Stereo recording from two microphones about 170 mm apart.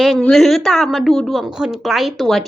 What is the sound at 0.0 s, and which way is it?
A woman's voice, centre (ahead or behind).